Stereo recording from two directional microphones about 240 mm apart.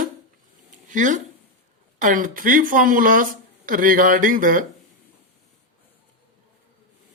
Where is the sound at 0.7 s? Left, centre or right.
Right.